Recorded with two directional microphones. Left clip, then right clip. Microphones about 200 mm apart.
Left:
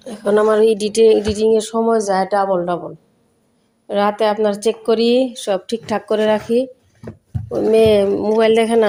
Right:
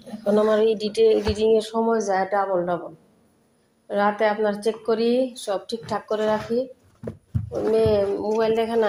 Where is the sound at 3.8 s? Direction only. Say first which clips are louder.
Left 5 dB; 35° left (ahead or behind).